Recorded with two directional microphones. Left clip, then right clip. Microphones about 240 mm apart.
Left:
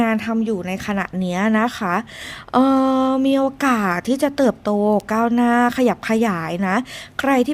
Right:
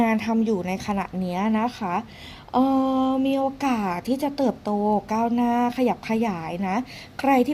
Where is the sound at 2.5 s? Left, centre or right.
Centre.